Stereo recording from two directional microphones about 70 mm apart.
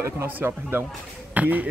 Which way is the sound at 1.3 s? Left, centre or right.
Right.